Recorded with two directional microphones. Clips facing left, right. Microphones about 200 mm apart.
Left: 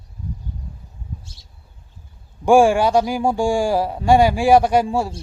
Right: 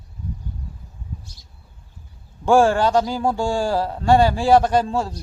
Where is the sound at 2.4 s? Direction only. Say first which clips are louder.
Left 2 dB; 15° left (ahead or behind).